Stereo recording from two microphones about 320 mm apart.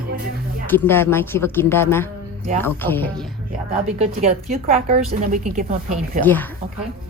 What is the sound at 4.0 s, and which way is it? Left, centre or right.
A woman's voice, right.